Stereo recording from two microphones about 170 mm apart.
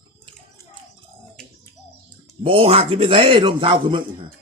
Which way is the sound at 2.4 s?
35° right (ahead or behind).